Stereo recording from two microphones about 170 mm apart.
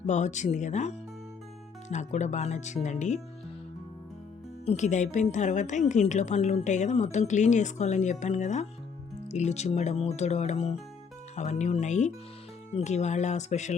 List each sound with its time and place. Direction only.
0.1 s a woman's voice: 45° left (ahead or behind)
4.6 s a woman's voice: 40° left (ahead or behind)